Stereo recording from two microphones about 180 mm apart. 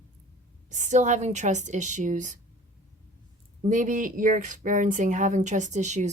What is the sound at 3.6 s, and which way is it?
A woman's voice, 45° right (ahead or behind).